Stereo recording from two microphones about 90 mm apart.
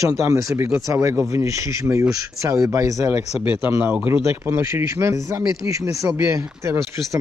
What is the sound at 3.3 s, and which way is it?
Speech, 10° right (ahead or behind).